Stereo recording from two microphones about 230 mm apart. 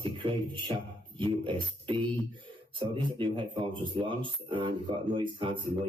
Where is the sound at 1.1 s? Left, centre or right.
Right.